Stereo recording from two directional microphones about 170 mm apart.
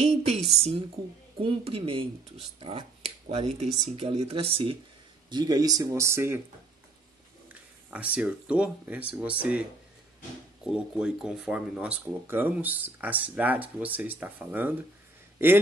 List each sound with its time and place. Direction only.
0.0 s speech: 40° right (ahead or behind)
5.3 s speech: 25° right (ahead or behind)
7.4 s speech: 10° right (ahead or behind)